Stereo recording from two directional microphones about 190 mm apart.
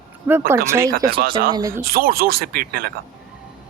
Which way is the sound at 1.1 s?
50° right (ahead or behind).